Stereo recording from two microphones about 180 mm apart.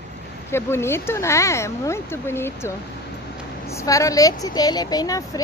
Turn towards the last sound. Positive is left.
turn(degrees=20)  # may be behind; listen again after turning